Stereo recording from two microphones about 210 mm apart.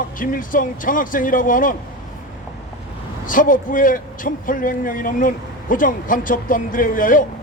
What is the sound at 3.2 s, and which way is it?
A man's voice, 40° left (ahead or behind).